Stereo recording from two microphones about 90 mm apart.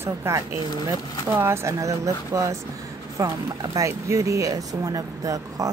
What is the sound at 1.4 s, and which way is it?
Speech, 30° right (ahead or behind).